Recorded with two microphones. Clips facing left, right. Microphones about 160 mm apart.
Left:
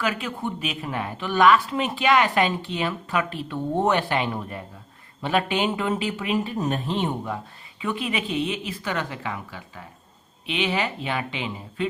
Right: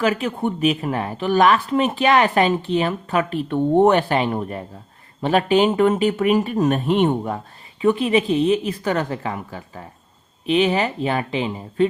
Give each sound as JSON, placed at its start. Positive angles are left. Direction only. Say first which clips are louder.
{"t": 0.0, "sound": "a woman's voice", "louder": "right 7 dB", "side_deg": -40}
{"t": 5.7, "sound": "speech", "louder": "right 9 dB", "side_deg": -55}
{"t": 7.8, "sound": "a woman's voice", "louder": "right 10 dB", "side_deg": -35}